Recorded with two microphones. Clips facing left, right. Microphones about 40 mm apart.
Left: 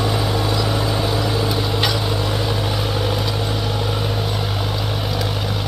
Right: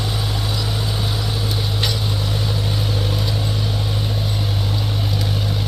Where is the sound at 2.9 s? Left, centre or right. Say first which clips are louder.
Left 2 dB; left.